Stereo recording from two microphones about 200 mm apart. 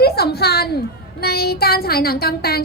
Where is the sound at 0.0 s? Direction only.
50° left (ahead or behind).